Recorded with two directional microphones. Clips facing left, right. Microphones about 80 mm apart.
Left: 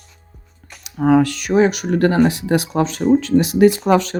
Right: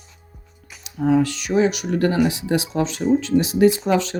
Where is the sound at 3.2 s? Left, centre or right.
Left.